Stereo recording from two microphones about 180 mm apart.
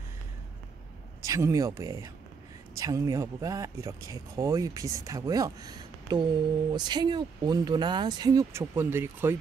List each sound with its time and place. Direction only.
1.2 s a man's voice: 20° right (ahead or behind)